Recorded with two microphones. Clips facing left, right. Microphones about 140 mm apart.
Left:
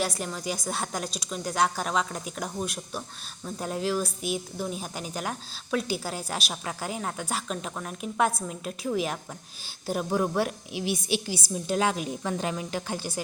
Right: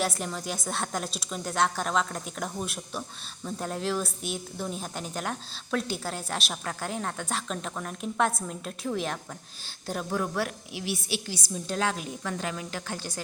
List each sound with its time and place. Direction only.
0.0 s a woman's voice: centre (ahead or behind)